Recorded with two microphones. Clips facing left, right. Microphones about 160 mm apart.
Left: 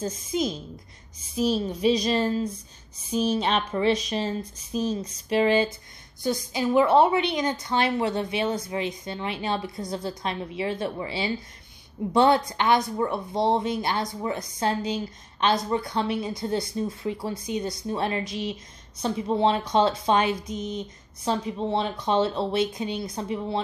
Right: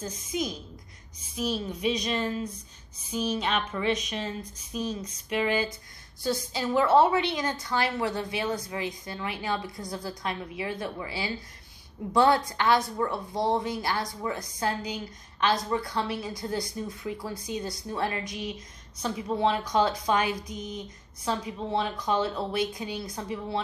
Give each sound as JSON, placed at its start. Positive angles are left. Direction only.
{"t": 0.0, "sound": "a woman's voice", "side_deg": 25}
{"t": 6.2, "sound": "a woman's voice", "side_deg": 15}